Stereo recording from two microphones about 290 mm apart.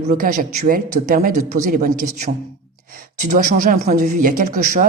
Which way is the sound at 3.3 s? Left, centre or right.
Right.